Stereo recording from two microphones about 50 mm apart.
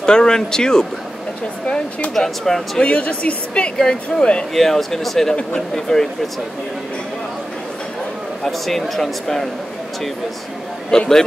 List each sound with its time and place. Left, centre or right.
0.0 s speech: centre
2.1 s speech: centre
2.8 s speech: left
4.6 s speech: centre
8.5 s speech: centre
10.9 s speech: centre